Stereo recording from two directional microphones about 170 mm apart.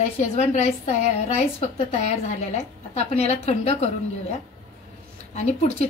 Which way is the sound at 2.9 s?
40° left (ahead or behind).